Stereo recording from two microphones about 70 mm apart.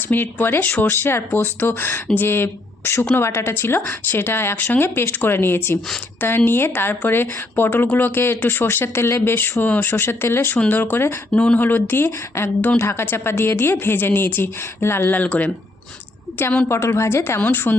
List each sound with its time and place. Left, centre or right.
0.1 s speech: left
11.3 s speech: centre
15.2 s speech: centre
16.6 s speech: left